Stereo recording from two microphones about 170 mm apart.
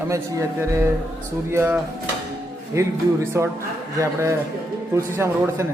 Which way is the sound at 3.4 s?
15° right (ahead or behind).